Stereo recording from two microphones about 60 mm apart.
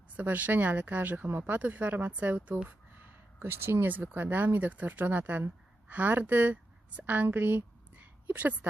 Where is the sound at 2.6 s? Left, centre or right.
Right.